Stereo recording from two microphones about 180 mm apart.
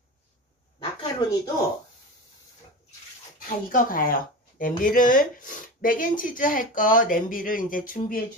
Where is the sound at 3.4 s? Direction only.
50° left (ahead or behind).